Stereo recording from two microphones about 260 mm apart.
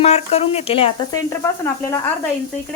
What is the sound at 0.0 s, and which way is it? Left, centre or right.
Speech, left.